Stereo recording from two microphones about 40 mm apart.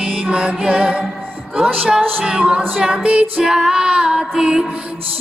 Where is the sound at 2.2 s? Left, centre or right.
Right.